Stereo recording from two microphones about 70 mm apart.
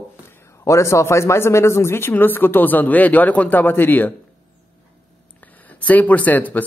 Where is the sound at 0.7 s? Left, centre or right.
Left.